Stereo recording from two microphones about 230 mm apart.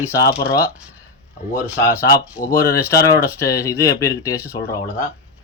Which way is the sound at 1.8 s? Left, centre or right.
Centre.